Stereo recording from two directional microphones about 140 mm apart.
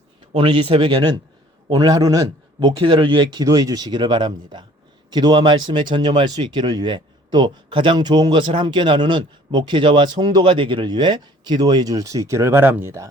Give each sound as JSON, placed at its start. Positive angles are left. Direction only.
{"t": 0.3, "sound": "a man's voice", "side_deg": -35}
{"t": 2.6, "sound": "speech", "side_deg": -35}